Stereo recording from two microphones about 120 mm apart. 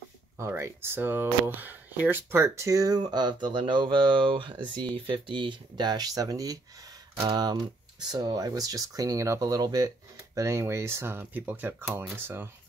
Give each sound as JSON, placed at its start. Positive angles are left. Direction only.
{"t": 0.4, "sound": "speech", "side_deg": -25}